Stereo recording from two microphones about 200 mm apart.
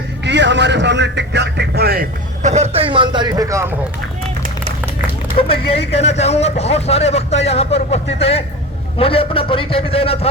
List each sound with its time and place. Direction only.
0.3 s a man's voice: 60° right (ahead or behind); by 3.7 s 15° right (ahead or behind)
5.4 s a man's voice: 30° left (ahead or behind)